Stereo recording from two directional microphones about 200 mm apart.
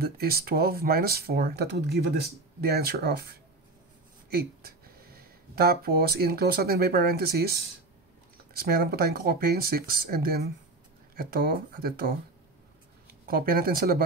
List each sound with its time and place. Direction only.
0.0 s speech: 50° right (ahead or behind)
4.6 s speech: 50° right (ahead or behind)
8.5 s speech: 50° right (ahead or behind)
13.3 s speech: 50° right (ahead or behind)